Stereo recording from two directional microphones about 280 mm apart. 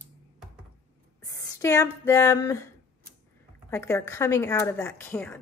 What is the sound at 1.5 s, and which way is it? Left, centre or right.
A woman's voice, centre.